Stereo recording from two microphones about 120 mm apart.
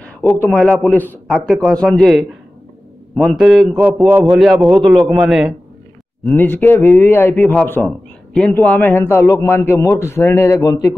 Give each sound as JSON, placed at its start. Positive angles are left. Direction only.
{"t": 0.0, "sound": "a man's voice", "side_deg": 15}
{"t": 6.3, "sound": "a man's voice", "side_deg": 15}